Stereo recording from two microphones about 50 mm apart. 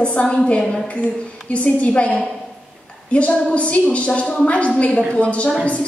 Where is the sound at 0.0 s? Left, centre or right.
Left.